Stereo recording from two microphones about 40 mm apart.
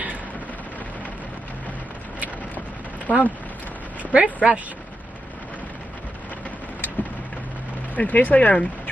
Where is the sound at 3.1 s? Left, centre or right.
Left.